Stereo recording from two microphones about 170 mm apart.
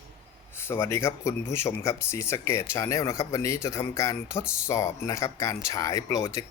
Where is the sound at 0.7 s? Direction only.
15° left (ahead or behind).